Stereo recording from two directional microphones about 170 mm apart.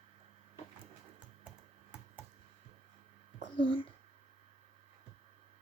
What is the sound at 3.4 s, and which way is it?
Speech, 30° left (ahead or behind).